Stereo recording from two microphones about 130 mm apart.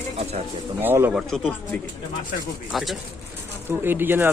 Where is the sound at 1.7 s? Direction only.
15° left (ahead or behind).